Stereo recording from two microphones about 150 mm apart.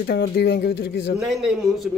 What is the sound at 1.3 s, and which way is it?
Speech, 5° right (ahead or behind).